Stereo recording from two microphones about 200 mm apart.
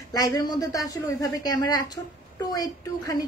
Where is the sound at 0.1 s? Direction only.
20° left (ahead or behind).